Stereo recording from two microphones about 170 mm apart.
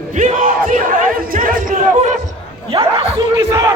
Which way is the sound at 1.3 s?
55° right (ahead or behind).